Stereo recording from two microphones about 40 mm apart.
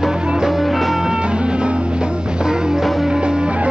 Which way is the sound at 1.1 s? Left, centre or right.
Right.